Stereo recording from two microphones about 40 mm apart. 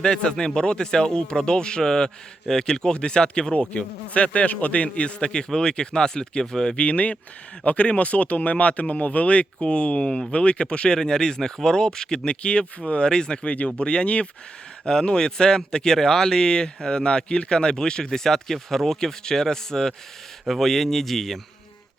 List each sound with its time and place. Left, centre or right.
0.0 s speech: left
6.7 s speech: left; by 21.3 s centre